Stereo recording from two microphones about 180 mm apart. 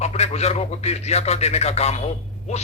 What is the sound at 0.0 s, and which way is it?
Speech, 35° left (ahead or behind).